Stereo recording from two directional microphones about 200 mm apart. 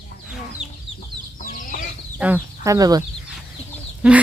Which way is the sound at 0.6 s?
35° right (ahead or behind).